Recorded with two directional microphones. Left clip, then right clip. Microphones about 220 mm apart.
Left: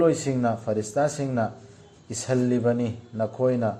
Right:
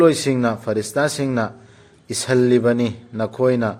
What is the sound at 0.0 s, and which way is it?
Speech, 50° right (ahead or behind).